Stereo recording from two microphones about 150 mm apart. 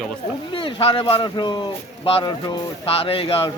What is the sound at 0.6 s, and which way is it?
Speech, 35° left (ahead or behind).